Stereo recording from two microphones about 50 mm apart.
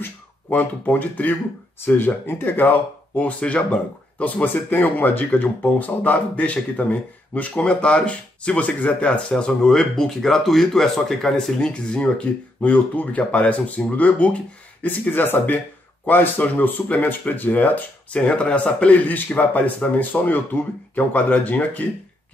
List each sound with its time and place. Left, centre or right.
0.0 s speech: left
9.3 s a man's voice: centre
14.8 s speech: left
18.1 s a man's voice: left